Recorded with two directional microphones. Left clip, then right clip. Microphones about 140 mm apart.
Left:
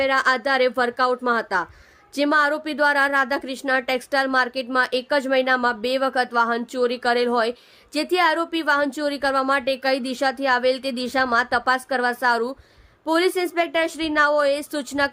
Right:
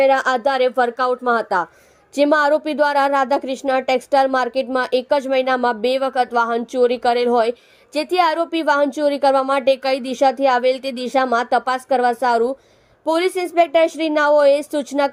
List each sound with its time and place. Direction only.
0.0 s a woman's voice: 5° right (ahead or behind)